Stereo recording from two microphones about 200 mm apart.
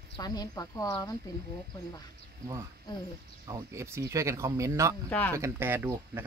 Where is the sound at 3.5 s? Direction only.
15° right (ahead or behind).